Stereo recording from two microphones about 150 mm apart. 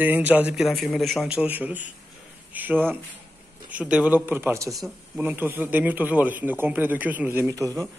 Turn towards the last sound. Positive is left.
turn(degrees=-20)  # may be behind; listen again after turning